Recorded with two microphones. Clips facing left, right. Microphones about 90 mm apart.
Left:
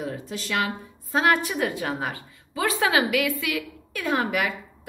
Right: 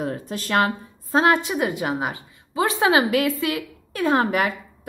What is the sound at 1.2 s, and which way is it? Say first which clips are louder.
A woman's voice: right 2 dB; 20° right (ahead or behind).